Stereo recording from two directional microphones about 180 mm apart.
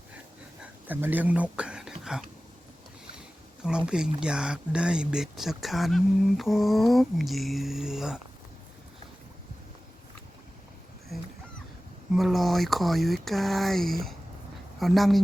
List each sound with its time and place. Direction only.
0.6 s a sound: 10° right (ahead or behind)
3.8 s speech: 5° right (ahead or behind)
12.1 s speech: centre (ahead or behind)